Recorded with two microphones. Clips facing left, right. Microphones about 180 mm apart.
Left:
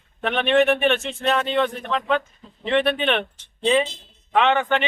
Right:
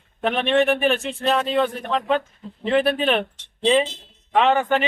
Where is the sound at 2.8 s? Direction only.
35° right (ahead or behind).